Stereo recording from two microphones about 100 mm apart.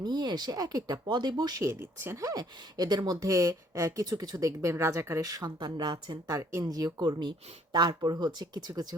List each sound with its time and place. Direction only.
0.0 s speech: 45° right (ahead or behind)
1.6 s speech: 30° right (ahead or behind)
5.4 s speech: 45° right (ahead or behind)
6.3 s speech: 35° right (ahead or behind)